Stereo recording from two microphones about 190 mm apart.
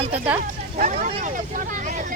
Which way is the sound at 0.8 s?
40° right (ahead or behind).